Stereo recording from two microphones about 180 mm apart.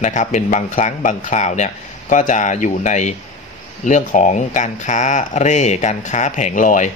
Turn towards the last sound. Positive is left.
turn(degrees=45)  # may be behind; listen again after turning